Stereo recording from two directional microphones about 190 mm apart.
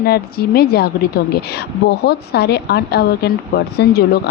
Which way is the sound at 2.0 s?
60° left (ahead or behind).